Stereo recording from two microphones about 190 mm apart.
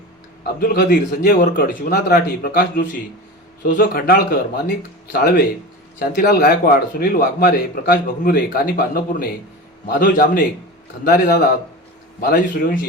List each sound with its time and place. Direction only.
0.4 s a man's voice: 50° left (ahead or behind)